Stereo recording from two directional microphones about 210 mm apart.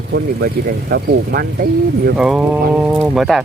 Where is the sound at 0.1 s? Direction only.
45° right (ahead or behind).